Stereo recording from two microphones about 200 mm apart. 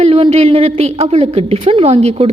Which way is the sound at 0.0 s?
30° right (ahead or behind).